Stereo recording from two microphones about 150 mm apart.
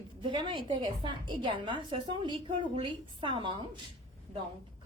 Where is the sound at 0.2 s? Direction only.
30° right (ahead or behind).